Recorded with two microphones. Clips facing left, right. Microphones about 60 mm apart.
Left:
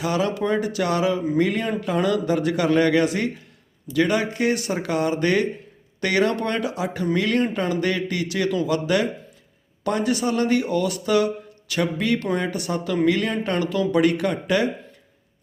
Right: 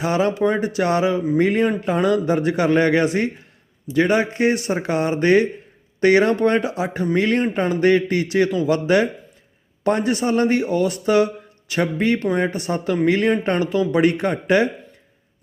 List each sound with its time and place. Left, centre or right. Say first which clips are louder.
0.0 s speech: right 4 dB; right